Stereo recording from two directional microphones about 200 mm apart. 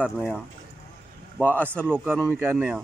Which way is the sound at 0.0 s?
Centre (ahead or behind).